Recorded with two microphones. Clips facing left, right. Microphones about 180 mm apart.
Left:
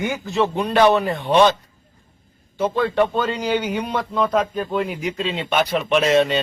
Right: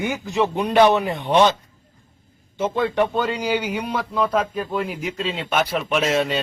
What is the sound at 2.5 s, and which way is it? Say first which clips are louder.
A man's voice: left 2 dB; 20° right (ahead or behind).